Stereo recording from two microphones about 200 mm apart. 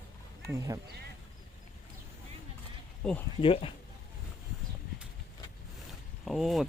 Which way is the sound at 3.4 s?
25° left (ahead or behind).